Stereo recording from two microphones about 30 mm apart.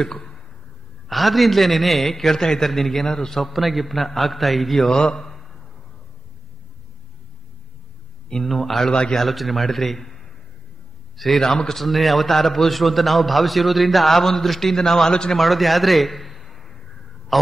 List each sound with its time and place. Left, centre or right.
0.0 s a sound: centre
1.0 s a man's voice: centre
2.7 s a man's voice: centre
3.3 s a man's voice: centre
5.0 s a man's voice: centre
5.3 s a sound: centre
8.5 s a man's voice: centre
11.4 s a man's voice: centre
15.0 s a man's voice: left
15.3 s a man's voice: centre
17.3 s a sound: centre